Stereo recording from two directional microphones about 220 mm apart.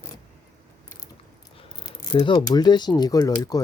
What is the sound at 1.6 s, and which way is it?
Speech, 20° left (ahead or behind).